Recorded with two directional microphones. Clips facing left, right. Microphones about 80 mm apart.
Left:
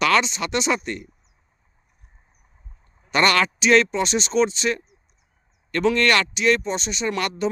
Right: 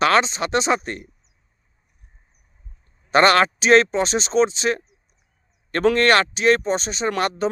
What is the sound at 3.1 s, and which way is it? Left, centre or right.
Speech, right.